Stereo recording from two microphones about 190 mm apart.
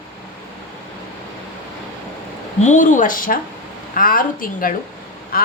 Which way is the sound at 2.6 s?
40° left (ahead or behind).